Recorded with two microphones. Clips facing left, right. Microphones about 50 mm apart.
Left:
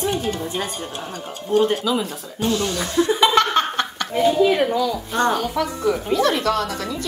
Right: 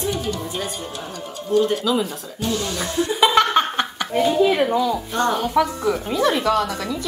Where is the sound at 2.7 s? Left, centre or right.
Centre.